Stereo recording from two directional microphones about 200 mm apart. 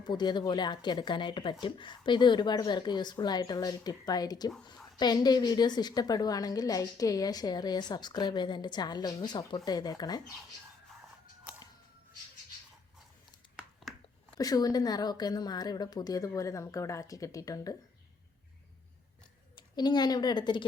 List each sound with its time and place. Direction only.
0.0 s a woman's voice: 20° left (ahead or behind)
14.3 s a woman's voice: 20° left (ahead or behind)
19.5 s a woman's voice: 20° left (ahead or behind)